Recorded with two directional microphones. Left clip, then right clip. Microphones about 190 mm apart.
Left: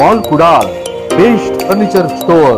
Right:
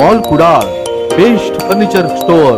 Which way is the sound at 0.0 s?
25° right (ahead or behind).